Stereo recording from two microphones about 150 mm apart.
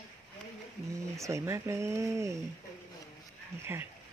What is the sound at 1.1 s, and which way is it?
Speech, 20° right (ahead or behind).